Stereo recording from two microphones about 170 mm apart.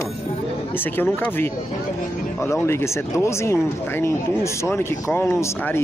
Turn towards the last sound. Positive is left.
turn(degrees=15)  # may be behind; listen again after turning